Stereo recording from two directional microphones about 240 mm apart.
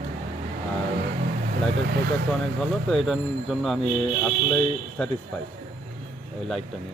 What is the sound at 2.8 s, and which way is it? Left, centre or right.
Speech, centre.